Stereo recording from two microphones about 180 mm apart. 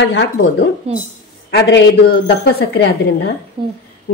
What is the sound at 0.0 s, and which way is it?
Speech, 90° left.